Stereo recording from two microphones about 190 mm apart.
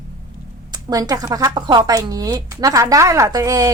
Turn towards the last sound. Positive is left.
turn(degrees=-20)  # may be behind; listen again after turning